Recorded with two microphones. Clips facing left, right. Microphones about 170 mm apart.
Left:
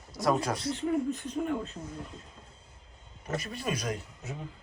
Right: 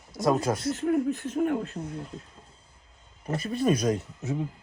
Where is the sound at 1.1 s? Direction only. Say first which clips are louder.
Right 4 dB; centre (ahead or behind).